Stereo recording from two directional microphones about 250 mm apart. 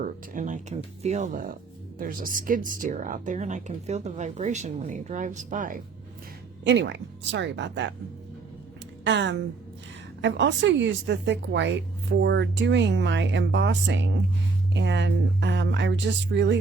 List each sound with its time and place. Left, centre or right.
0.0 s speech: right
6.7 s speech: right
9.0 s speech: right